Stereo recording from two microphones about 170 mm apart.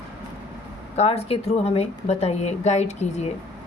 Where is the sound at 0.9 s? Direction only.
40° left (ahead or behind).